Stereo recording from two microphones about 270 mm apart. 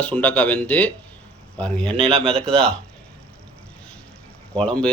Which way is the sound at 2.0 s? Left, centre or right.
Right.